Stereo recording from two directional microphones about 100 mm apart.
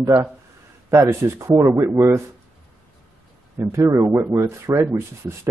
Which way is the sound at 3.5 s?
25° right (ahead or behind).